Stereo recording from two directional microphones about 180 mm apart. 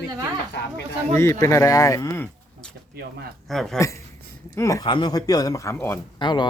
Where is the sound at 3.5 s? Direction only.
Centre (ahead or behind).